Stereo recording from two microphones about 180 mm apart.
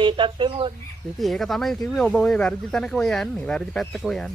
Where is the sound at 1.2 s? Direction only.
Centre (ahead or behind).